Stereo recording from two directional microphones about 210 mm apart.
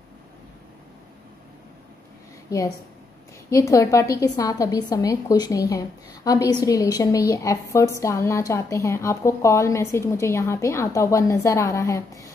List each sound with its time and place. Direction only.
3.4 s a woman's voice: 15° left (ahead or behind)